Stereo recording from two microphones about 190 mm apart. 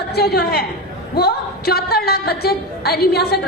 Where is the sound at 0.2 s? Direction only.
55° left (ahead or behind).